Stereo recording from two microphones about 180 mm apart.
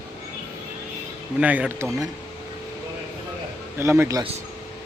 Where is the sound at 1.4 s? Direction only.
10° right (ahead or behind).